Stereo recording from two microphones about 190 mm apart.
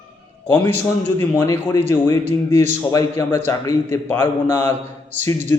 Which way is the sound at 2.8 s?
15° left (ahead or behind).